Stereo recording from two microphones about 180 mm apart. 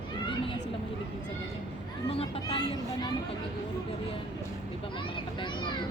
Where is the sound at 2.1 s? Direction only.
30° left (ahead or behind).